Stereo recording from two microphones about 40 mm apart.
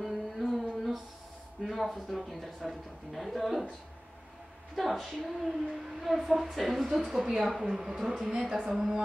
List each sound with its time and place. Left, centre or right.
0.0 s a sound: centre
1.6 s a woman's voice: centre
4.7 s a woman's voice: centre